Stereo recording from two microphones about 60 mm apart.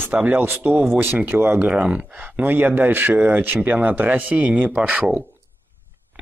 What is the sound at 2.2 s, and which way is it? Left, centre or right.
Speech, right.